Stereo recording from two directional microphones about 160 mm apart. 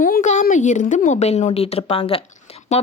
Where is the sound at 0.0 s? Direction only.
55° left (ahead or behind).